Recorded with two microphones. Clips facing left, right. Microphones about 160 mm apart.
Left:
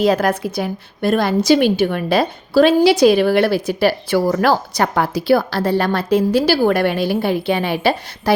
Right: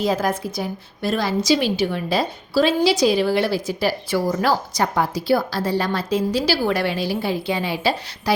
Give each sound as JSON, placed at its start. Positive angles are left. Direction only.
{"t": 0.0, "sound": "a woman's voice", "side_deg": 70}